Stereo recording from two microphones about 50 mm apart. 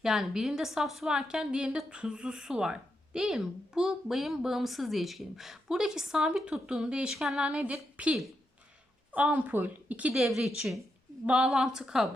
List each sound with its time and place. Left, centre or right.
0.0 s a woman's voice: centre
7.4 s a woman's voice: right
10.2 s a woman's voice: centre
11.3 s a woman's voice: centre